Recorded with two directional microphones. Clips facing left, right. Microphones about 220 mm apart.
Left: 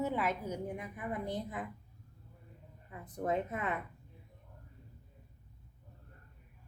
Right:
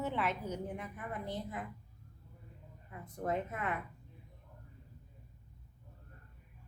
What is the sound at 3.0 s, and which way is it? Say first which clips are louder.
Speech: left 2 dB; 20° left (ahead or behind).